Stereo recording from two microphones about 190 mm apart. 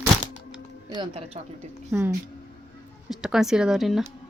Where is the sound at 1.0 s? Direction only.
30° right (ahead or behind).